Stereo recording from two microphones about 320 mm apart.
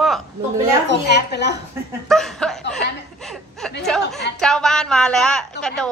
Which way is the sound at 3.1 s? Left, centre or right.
Centre.